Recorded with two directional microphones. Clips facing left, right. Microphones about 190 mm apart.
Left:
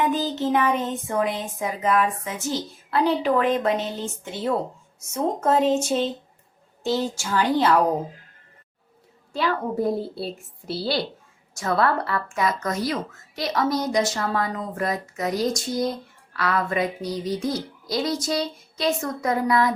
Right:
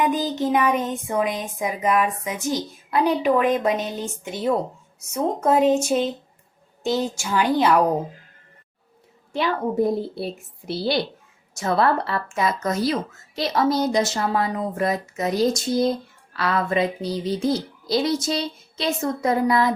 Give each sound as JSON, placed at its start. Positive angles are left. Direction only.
{"t": 0.0, "sound": "a woman's voice", "side_deg": -15}
{"t": 9.3, "sound": "speech", "side_deg": -20}